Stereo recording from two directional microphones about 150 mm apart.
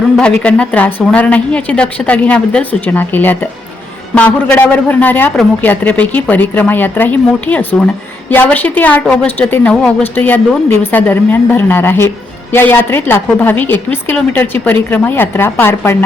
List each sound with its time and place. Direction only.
0.4 s a woman's voice: 10° left (ahead or behind)